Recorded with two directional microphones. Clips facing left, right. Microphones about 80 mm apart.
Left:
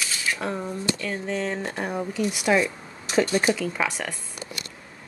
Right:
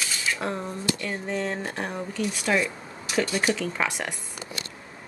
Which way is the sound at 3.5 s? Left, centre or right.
Centre.